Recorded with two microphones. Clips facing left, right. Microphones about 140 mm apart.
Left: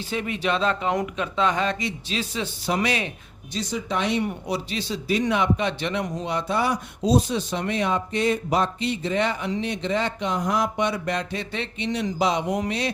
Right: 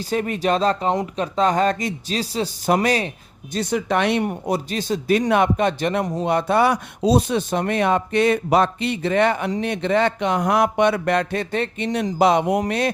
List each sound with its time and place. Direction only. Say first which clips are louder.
0.0 s speech: right 5 dB; 45° right (ahead or behind)
2.6 s a man's voice: right 6 dB; 50° right (ahead or behind)
3.5 s speech: right 6 dB; 60° right (ahead or behind)
4.3 s a man's voice: right 5 dB; 45° right (ahead or behind)